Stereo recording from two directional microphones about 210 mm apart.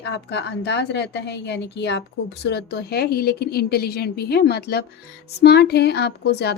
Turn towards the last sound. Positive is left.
turn(degrees=50)  # may be behind; listen again after turning